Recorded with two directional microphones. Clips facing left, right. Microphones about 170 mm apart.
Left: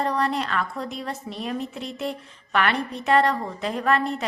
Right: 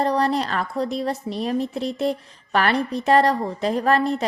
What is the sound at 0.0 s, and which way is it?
A woman's voice, 35° right (ahead or behind).